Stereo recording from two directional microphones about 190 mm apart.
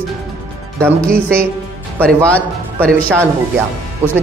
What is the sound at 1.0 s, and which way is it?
A man's voice, 5° left (ahead or behind).